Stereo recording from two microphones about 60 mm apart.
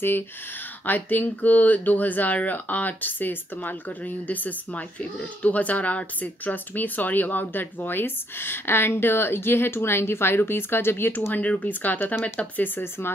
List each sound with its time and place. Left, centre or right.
0.8 s speech: left